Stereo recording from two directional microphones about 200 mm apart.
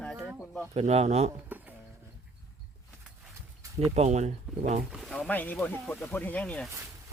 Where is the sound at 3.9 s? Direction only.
35° right (ahead or behind).